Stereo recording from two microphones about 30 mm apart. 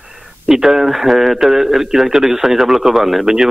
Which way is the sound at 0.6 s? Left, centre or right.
Centre.